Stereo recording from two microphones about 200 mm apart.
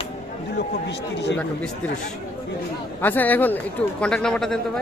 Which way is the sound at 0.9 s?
60° left (ahead or behind).